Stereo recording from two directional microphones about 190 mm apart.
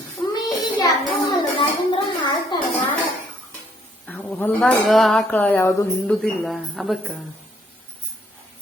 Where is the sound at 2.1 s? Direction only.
25° left (ahead or behind).